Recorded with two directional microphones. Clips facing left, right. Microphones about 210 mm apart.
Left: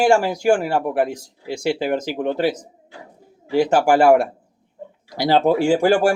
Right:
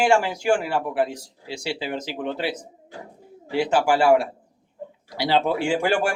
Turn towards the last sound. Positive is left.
turn(degrees=40)  # may be behind; listen again after turning